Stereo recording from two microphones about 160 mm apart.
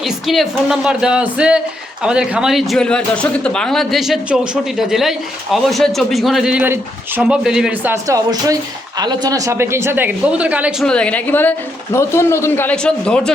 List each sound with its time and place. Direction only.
0.0 s speech: centre (ahead or behind)
8.0 s a woman's voice: 20° right (ahead or behind); by 13.3 s 5° left (ahead or behind)